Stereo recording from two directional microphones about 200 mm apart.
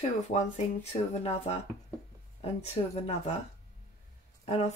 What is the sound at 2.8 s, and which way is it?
Speech, 25° left (ahead or behind).